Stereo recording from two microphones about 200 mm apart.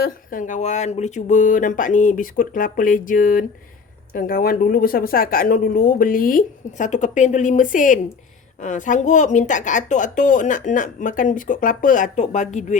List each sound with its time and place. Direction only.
0.0 s a woman's voice: 45° left (ahead or behind)